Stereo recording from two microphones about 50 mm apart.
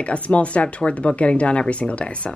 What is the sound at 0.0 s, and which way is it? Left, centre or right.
A woman's voice, left.